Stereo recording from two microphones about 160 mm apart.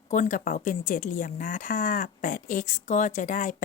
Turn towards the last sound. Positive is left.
turn(degrees=55)  # may be behind; listen again after turning